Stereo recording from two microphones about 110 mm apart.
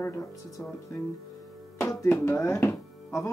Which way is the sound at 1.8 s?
25° left (ahead or behind).